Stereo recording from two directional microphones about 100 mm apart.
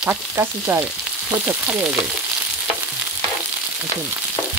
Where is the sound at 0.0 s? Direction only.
20° right (ahead or behind).